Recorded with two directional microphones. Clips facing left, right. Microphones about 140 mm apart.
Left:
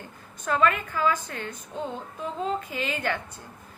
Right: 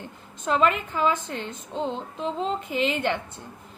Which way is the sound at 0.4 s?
20° right (ahead or behind).